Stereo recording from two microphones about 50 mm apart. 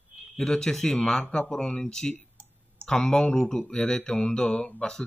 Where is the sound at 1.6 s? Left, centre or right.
Left.